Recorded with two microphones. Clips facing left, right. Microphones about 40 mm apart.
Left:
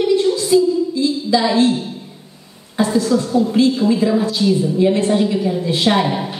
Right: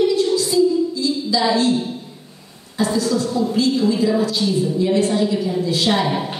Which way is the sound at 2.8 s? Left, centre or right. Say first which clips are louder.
Left 3 dB; left.